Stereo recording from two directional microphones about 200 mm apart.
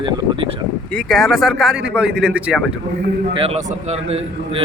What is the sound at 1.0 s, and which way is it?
Speech, centre (ahead or behind).